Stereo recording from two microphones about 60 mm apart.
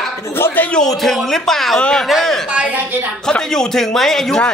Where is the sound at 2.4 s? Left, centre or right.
Right.